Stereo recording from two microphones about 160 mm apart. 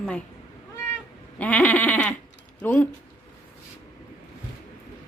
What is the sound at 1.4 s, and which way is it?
Speech, 10° left (ahead or behind).